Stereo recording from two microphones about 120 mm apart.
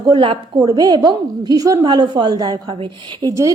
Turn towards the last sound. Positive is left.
turn(degrees=-25)  # may be behind; listen again after turning